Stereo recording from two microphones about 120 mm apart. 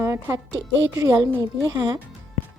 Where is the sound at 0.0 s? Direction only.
25° right (ahead or behind).